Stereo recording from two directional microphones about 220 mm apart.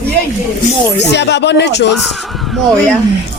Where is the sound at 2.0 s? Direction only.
Centre (ahead or behind).